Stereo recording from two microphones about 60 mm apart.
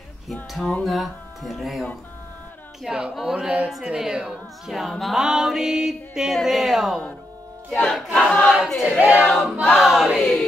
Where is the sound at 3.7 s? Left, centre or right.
Centre.